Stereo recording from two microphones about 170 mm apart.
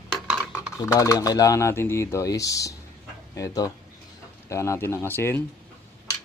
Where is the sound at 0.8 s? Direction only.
20° left (ahead or behind).